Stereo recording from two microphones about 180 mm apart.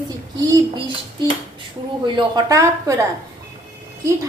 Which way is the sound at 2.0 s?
20° right (ahead or behind).